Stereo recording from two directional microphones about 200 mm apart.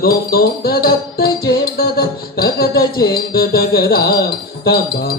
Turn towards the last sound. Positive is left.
turn(degrees=50)  # may be behind; listen again after turning